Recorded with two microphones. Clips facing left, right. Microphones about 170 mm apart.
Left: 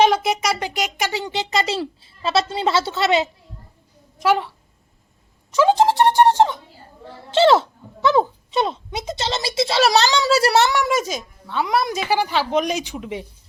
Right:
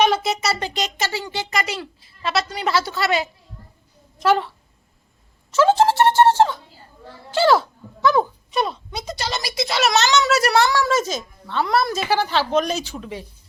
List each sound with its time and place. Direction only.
0.1 s speech: 10° left (ahead or behind)
4.2 s speech: 10° left (ahead or behind)
5.5 s music: 15° left (ahead or behind)
7.3 s speech: 25° left (ahead or behind)